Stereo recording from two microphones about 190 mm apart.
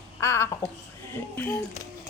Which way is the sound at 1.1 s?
10° left (ahead or behind).